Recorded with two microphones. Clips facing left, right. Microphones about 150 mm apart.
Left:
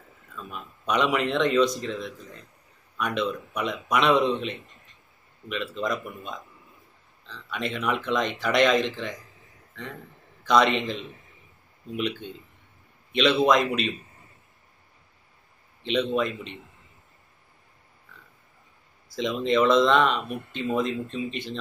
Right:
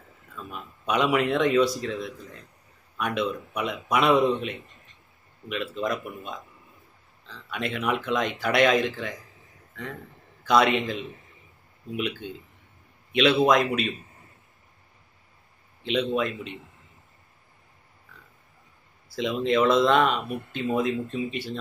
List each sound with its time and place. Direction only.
0.5 s speech: 5° right (ahead or behind)
7.5 s speech: 5° right (ahead or behind)
10.4 s speech: 5° right (ahead or behind)
13.4 s speech: 5° right (ahead or behind)
15.8 s speech: 5° right (ahead or behind)
19.1 s speech: 5° right (ahead or behind)